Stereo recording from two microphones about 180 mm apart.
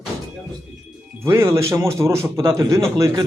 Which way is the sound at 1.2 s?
15° right (ahead or behind).